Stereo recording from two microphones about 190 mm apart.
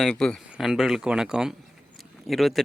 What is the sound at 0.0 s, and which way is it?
Speech, 5° left (ahead or behind).